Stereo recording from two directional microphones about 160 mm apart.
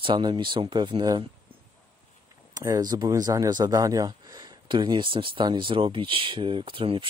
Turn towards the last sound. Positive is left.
turn(degrees=-35)  # may be behind; listen again after turning